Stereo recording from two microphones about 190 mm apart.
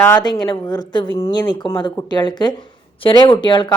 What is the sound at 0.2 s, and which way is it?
Speech, 25° left (ahead or behind).